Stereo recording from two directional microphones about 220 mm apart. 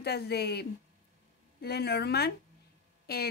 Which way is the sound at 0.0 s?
45° left (ahead or behind).